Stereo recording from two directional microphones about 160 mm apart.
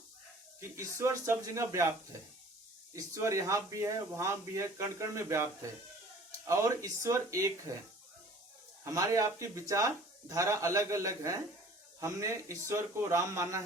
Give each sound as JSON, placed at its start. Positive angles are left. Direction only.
{"t": 0.6, "sound": "speech", "side_deg": -15}
{"t": 2.9, "sound": "speech", "side_deg": -20}
{"t": 6.5, "sound": "speech", "side_deg": -20}
{"t": 8.8, "sound": "speech", "side_deg": -20}